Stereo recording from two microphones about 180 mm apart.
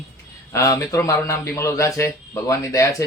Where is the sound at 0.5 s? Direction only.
20° left (ahead or behind).